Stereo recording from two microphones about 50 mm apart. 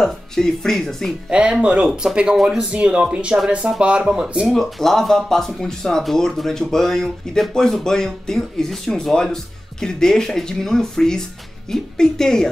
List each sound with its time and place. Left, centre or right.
0.0 s speech: centre
1.3 s speech: right
4.5 s speech: centre